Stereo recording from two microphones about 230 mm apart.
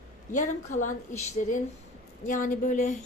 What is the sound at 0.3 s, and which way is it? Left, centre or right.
A woman's voice, left.